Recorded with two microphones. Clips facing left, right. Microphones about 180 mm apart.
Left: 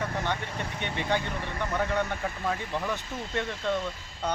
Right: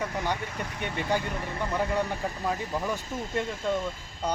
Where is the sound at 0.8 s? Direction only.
5° right (ahead or behind).